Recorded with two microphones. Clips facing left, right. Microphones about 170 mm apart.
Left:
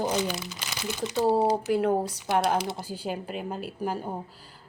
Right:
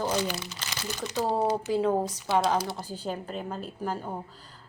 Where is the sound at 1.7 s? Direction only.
60° left (ahead or behind).